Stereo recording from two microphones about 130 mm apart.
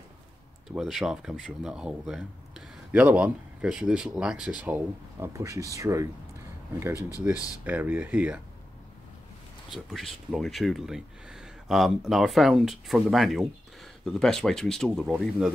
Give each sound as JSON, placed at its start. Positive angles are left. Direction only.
{"t": 0.7, "sound": "speech", "side_deg": -5}
{"t": 7.3, "sound": "speech", "side_deg": 25}
{"t": 7.6, "sound": "speech", "side_deg": -15}
{"t": 9.7, "sound": "speech", "side_deg": 0}